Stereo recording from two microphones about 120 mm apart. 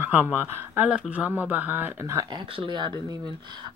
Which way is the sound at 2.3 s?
45° right (ahead or behind).